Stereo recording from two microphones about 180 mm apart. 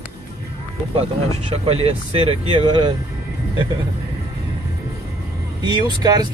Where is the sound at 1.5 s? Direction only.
35° right (ahead or behind).